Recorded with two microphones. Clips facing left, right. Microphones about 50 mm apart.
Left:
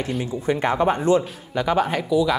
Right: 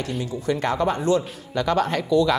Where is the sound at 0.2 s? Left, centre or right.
Left.